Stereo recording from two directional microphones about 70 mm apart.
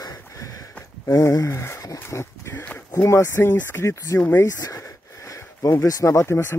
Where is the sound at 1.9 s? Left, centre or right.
Left.